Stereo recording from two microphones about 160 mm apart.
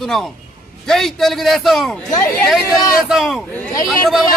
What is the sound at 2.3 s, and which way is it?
A man's voice, 5° left (ahead or behind).